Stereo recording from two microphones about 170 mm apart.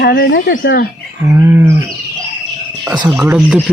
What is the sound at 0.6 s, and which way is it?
Speech, 70° left (ahead or behind).